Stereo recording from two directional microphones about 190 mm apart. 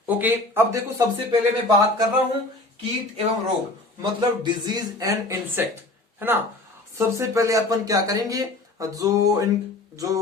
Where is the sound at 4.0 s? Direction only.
25° right (ahead or behind).